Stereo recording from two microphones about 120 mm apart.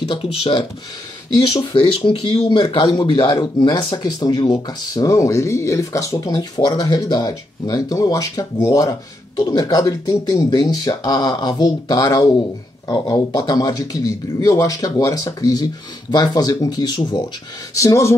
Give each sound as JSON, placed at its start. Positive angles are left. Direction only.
{"t": 0.1, "sound": "speech", "side_deg": 50}
{"t": 1.5, "sound": "speech", "side_deg": 40}
{"t": 2.6, "sound": "a man's voice", "side_deg": 35}